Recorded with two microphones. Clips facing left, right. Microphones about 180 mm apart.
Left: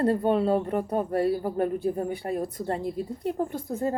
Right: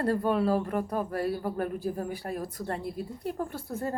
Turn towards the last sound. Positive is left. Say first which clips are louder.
# left 5 dB
turn(degrees=15)  # may be behind; listen again after turning